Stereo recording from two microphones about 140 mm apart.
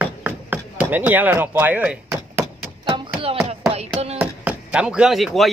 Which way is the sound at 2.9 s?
40° right (ahead or behind).